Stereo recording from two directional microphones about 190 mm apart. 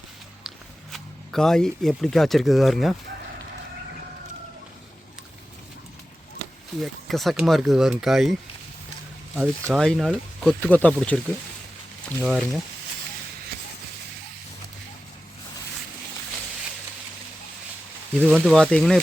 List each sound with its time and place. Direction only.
0.4 s speech: centre (ahead or behind)
6.7 s speech: centre (ahead or behind)
18.2 s speech: 5° right (ahead or behind)